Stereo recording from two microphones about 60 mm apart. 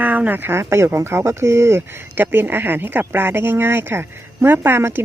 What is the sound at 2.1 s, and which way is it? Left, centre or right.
A woman's voice, right.